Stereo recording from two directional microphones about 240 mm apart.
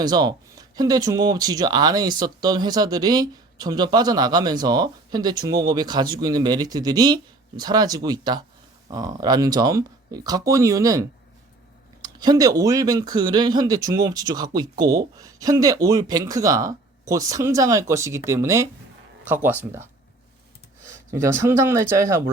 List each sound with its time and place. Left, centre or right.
0.0 s speech: centre
12.0 s speech: centre
21.4 s speech: centre